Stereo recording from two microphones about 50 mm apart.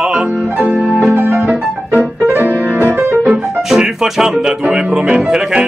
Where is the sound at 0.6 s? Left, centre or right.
Centre.